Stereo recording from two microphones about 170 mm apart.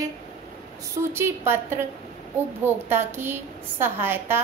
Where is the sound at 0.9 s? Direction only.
15° right (ahead or behind).